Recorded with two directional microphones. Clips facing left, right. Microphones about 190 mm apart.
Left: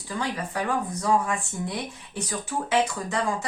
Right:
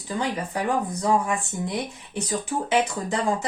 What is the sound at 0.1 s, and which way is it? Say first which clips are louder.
Speech: right 3 dB; 20° right (ahead or behind).